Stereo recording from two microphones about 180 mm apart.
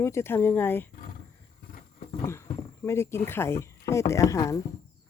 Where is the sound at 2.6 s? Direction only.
15° left (ahead or behind).